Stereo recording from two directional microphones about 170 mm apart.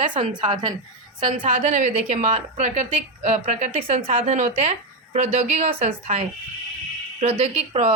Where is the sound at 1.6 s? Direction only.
45° right (ahead or behind).